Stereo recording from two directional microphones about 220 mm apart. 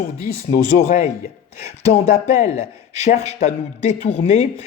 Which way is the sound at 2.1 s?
30° left (ahead or behind).